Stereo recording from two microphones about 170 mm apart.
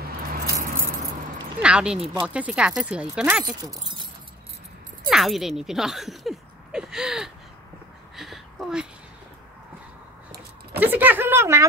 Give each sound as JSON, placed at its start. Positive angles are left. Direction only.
{"t": 0.3, "sound": "keys jangling", "side_deg": -55}
{"t": 1.6, "sound": "speech", "side_deg": -5}
{"t": 3.4, "sound": "speech", "side_deg": -25}
{"t": 5.0, "sound": "speech", "side_deg": 0}
{"t": 8.2, "sound": "a sound", "side_deg": 0}
{"t": 10.8, "sound": "a sound", "side_deg": -10}